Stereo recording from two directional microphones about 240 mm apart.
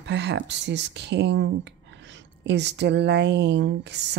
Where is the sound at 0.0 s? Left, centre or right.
Right.